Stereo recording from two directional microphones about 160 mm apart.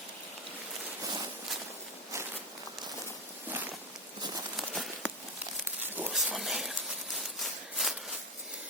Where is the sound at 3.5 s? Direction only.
10° right (ahead or behind).